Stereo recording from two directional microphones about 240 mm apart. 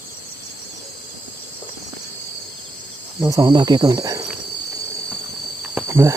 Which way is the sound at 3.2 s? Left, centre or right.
Centre.